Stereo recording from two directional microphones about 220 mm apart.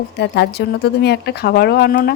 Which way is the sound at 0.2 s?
50° left (ahead or behind).